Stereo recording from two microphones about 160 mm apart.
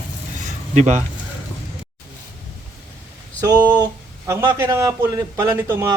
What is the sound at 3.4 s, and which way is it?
Speech, 25° right (ahead or behind).